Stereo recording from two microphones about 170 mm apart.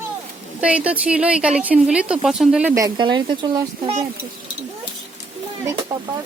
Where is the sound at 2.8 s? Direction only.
25° right (ahead or behind).